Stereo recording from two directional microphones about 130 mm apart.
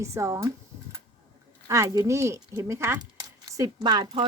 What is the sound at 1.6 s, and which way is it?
A woman's voice, 25° right (ahead or behind).